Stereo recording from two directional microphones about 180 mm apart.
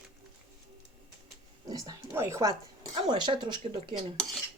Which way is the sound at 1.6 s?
20° right (ahead or behind).